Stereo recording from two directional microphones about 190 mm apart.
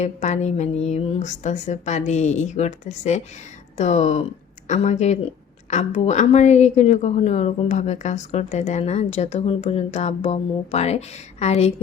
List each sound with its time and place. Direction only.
0.0 s a woman's voice: 35° left (ahead or behind)